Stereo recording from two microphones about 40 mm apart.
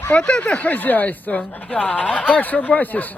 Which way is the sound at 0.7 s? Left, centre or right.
Left.